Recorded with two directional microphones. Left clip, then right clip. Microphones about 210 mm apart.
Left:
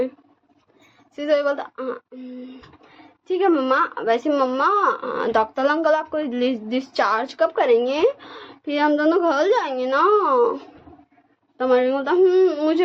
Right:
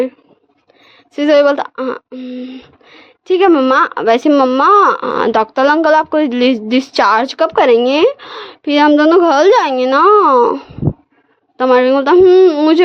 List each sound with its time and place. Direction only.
1.1 s speech: 50° right (ahead or behind)